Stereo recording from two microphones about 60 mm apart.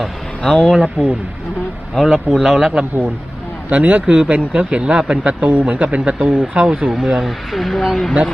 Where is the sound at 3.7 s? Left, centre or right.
Right; by 8.1 s centre.